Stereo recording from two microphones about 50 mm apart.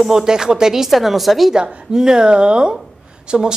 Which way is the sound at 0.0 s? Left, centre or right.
Centre.